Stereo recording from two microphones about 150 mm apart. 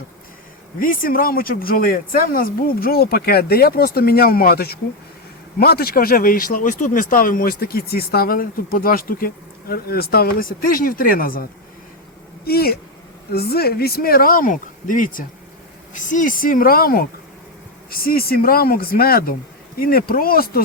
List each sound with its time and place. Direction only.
0.8 s speech: 70° left (ahead or behind)
12.5 s speech: 90° left